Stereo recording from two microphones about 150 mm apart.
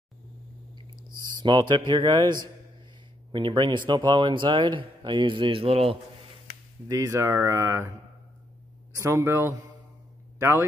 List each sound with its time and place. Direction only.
1.4 s speech: 30° right (ahead or behind)
6.9 s speech: 20° right (ahead or behind)
8.9 s speech: 20° right (ahead or behind)